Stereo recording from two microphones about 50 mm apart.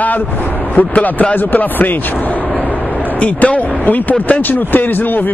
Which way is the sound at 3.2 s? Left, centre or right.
Left.